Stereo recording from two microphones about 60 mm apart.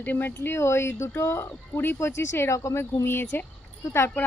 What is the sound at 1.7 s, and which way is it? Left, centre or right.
Speech, left.